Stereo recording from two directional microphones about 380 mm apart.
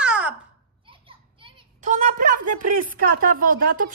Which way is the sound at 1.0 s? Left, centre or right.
Centre.